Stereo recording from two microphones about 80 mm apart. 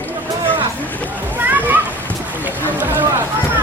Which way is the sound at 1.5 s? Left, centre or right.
Right.